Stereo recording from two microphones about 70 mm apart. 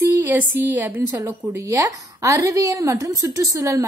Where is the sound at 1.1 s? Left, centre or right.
Right.